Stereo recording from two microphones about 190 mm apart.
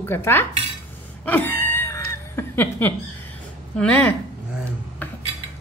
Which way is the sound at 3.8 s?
5° left (ahead or behind).